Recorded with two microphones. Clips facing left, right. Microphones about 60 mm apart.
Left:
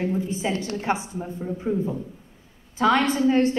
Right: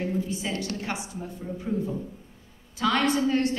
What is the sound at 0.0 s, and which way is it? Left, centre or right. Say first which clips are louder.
A woman's voice: left 4 dB; left.